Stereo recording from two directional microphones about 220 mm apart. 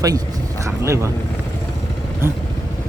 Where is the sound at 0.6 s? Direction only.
15° right (ahead or behind).